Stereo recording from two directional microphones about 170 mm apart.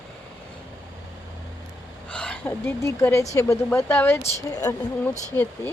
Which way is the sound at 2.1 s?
5° left (ahead or behind).